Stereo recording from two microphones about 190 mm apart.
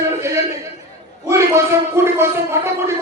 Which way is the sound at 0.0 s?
15° right (ahead or behind).